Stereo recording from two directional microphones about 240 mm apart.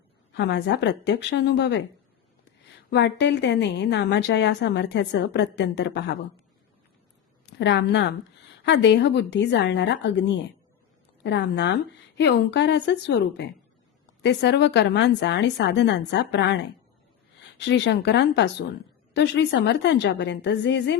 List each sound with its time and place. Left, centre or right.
0.3 s a woman's voice: left
2.9 s a woman's voice: left
7.4 s a woman's voice: left